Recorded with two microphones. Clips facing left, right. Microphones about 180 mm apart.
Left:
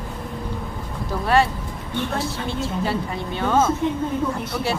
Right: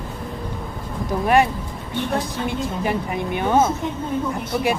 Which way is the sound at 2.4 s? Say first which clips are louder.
Right 1 dB; 15° right (ahead or behind).